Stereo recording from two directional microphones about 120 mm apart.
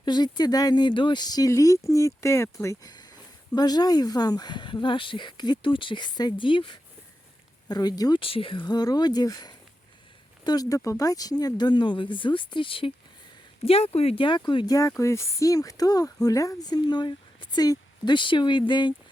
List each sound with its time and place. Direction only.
0.0 s speech: 35° left (ahead or behind)
2.9 s speech: 35° left (ahead or behind)
8.2 s speech: 50° left (ahead or behind)
13.7 s speech: 60° left (ahead or behind); by 14.8 s 40° left (ahead or behind)
14.8 s speech: 25° left (ahead or behind); by 18.9 s 40° left (ahead or behind)